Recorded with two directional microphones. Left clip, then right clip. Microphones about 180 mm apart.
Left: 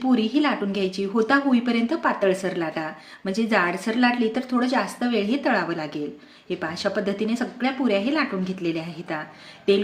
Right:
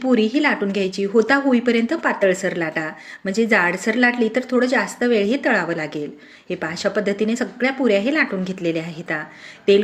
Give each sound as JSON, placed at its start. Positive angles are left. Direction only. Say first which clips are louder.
{"t": 0.0, "sound": "a woman's voice", "louder": "right 4 dB", "side_deg": -15}